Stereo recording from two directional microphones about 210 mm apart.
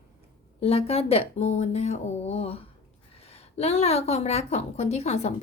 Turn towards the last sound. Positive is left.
turn(degrees=30)  # may be behind; listen again after turning